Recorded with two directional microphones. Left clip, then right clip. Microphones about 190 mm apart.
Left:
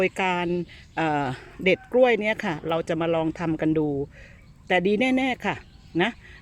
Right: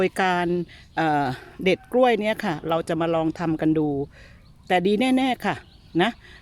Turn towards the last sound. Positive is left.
turn(degrees=-15)  # may be behind; listen again after turning